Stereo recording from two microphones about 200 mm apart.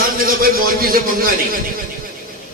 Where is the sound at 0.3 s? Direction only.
45° right (ahead or behind).